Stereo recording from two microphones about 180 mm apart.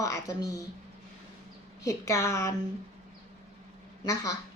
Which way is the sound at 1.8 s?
15° left (ahead or behind).